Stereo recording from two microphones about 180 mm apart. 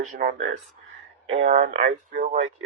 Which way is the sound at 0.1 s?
45° right (ahead or behind).